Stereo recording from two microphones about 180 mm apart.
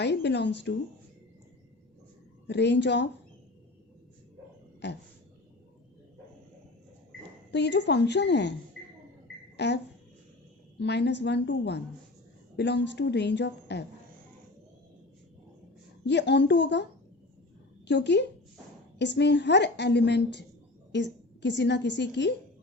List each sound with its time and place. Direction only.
0.0 s a woman's voice: 70° left (ahead or behind)
2.5 s a woman's voice: 75° left (ahead or behind)
4.8 s a woman's voice: 75° left (ahead or behind)
7.5 s a woman's voice: 75° left (ahead or behind)
9.6 s a woman's voice: 75° left (ahead or behind)
16.0 s a woman's voice: 75° left (ahead or behind)
17.8 s a woman's voice: 75° left (ahead or behind)